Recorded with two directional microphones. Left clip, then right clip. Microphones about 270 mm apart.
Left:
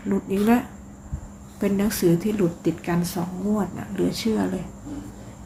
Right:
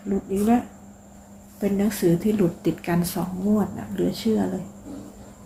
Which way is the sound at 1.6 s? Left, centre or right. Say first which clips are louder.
Left 1 dB; centre.